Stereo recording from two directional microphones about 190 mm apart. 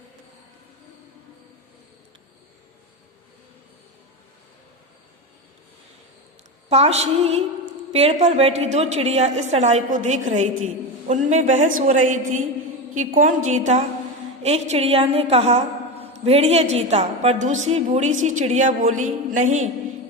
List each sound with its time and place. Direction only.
6.7 s a woman's voice: 35° right (ahead or behind)